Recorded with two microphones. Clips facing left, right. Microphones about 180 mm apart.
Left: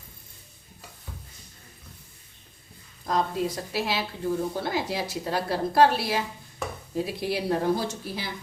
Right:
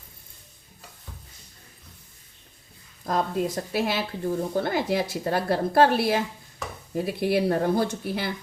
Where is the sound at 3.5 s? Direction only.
55° right (ahead or behind).